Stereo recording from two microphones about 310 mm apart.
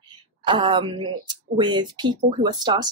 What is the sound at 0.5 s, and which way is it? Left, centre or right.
Speech, centre.